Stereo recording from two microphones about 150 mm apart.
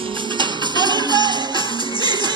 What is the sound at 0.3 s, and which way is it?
Music, 30° right (ahead or behind).